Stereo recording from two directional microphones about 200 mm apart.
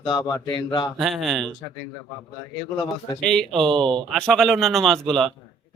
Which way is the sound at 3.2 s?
5° left (ahead or behind).